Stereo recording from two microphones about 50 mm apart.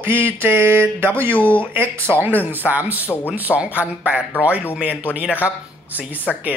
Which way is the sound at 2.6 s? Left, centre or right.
Centre.